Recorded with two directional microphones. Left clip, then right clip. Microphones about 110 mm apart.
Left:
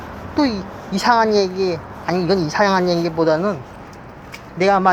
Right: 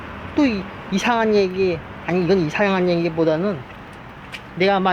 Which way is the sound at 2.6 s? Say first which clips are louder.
Left 7 dB; 40° right (ahead or behind).